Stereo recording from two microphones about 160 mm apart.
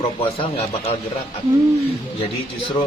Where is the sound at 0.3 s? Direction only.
35° left (ahead or behind).